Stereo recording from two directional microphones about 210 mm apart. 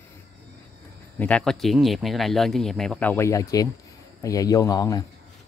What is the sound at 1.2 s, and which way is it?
Speech, 5° left (ahead or behind).